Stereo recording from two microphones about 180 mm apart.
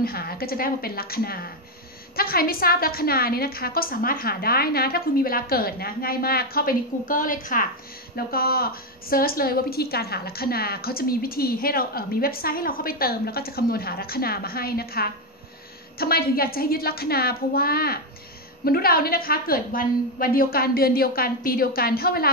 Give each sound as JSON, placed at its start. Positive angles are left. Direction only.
{"t": 0.0, "sound": "a woman's voice", "side_deg": 55}